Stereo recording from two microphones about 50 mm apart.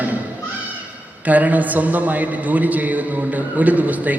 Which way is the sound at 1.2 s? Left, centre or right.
Right.